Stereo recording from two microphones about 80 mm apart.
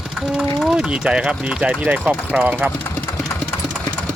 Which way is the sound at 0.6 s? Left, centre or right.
Centre.